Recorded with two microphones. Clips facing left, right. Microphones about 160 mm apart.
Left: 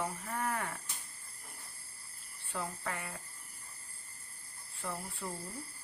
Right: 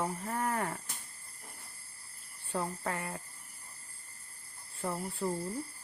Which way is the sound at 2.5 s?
35° right (ahead or behind).